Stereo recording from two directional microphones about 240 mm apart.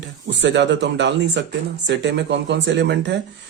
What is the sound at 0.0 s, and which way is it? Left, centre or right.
Speech, right.